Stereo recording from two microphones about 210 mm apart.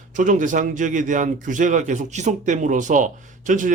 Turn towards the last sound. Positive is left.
turn(degrees=-35)  # may be behind; listen again after turning